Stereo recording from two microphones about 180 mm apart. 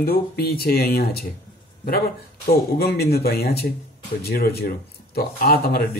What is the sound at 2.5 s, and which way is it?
Speech, 60° left (ahead or behind).